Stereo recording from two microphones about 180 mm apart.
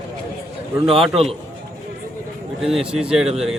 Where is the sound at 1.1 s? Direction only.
35° right (ahead or behind).